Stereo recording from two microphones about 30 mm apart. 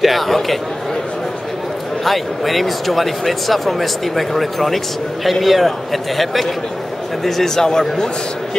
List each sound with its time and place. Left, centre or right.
0.0 s a man's voice: centre
2.0 s speech: centre
7.2 s a man's voice: centre